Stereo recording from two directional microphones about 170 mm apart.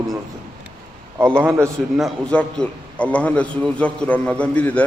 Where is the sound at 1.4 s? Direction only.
15° right (ahead or behind).